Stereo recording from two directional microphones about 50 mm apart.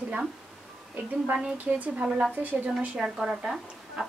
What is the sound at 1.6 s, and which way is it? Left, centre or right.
Speech, right.